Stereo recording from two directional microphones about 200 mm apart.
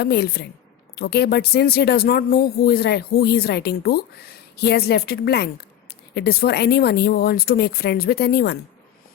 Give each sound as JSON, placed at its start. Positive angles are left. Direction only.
{"t": 0.0, "sound": "speech", "side_deg": 55}